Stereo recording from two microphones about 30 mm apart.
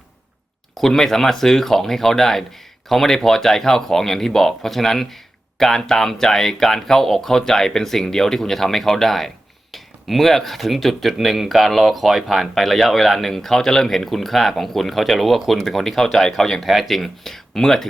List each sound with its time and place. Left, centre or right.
0.7 s speech: centre
9.7 s a sound: centre
10.4 s speech: centre